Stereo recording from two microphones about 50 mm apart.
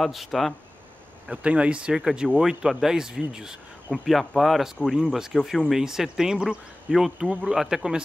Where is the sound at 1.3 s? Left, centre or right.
Right.